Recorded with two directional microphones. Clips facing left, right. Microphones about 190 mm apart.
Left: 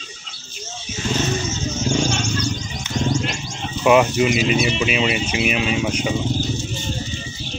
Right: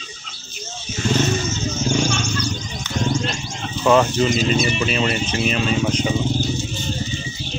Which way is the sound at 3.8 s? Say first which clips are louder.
Left 1 dB; 10° left (ahead or behind).